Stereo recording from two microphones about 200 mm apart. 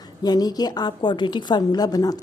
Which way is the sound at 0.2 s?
20° left (ahead or behind).